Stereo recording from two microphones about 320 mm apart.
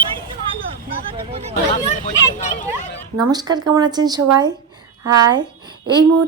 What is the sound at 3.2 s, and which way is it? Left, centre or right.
Speech, centre.